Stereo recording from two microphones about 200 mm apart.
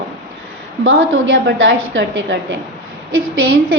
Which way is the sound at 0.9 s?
75° right (ahead or behind).